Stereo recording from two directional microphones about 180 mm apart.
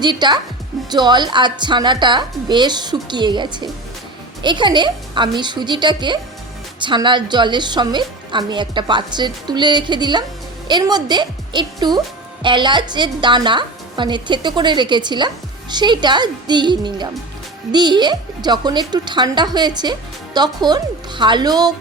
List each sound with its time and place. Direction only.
0.0 s a woman's voice: 25° right (ahead or behind)